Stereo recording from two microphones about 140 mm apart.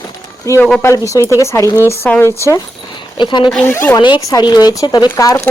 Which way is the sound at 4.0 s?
35° left (ahead or behind).